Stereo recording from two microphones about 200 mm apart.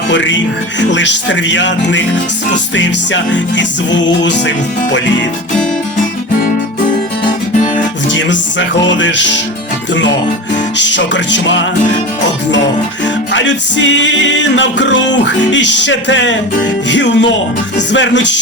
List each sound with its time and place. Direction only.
0.1 s music: 65° left (ahead or behind)
8.1 s music: 65° left (ahead or behind)
13.3 s music: 65° left (ahead or behind)